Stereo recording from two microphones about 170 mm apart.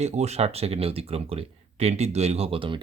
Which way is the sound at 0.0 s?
40° right (ahead or behind).